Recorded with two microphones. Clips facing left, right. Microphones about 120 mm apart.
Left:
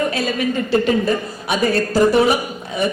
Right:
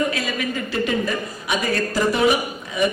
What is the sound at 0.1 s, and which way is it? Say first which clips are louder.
A man's voice: left 5 dB; 30° left (ahead or behind).